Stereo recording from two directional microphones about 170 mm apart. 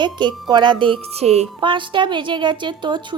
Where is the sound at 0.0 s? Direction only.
25° right (ahead or behind).